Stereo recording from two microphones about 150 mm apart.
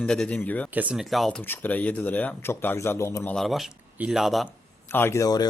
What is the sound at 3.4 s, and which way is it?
Speech, centre (ahead or behind).